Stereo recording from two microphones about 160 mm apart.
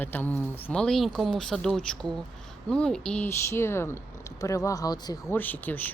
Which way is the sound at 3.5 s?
15° left (ahead or behind).